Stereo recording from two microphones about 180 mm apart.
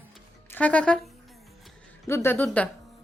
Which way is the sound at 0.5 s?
10° left (ahead or behind).